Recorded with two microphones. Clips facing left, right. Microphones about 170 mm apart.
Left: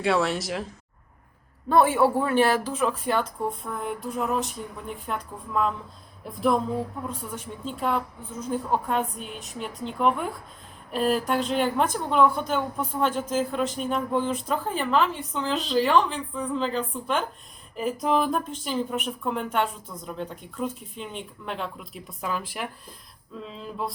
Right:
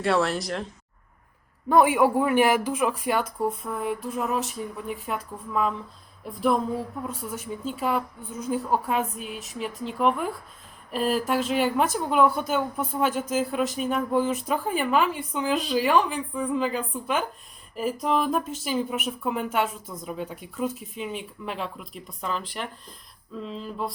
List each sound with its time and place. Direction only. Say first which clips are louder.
0.0 s speech: even; centre (ahead or behind)
1.7 s speech: right 1 dB; 15° right (ahead or behind)
7.1 s speech: right 2 dB; 10° right (ahead or behind)